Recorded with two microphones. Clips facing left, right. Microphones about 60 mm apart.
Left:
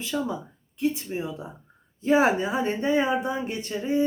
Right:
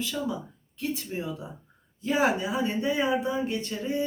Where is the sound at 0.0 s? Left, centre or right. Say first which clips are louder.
Left 2 dB; left.